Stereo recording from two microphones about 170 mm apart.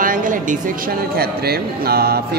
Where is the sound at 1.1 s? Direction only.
65° right (ahead or behind).